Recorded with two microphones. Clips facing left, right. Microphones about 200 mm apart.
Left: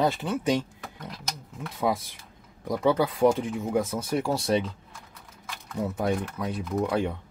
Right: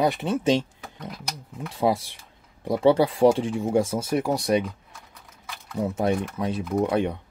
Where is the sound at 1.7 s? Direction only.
30° right (ahead or behind); by 4.7 s 15° right (ahead or behind).